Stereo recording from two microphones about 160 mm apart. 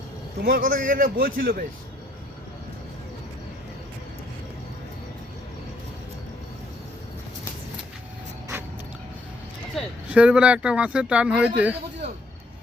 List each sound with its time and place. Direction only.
0.4 s a man's voice: 60° right (ahead or behind)
9.8 s a sound: centre (ahead or behind)
10.1 s speech: 10° right (ahead or behind)